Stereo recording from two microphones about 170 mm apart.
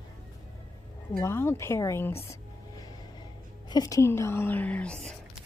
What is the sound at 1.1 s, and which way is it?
A woman's voice, 15° left (ahead or behind).